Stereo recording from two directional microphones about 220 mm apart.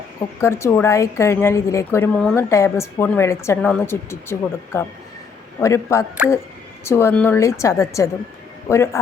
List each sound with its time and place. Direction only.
0.3 s a woman's voice: 10° left (ahead or behind)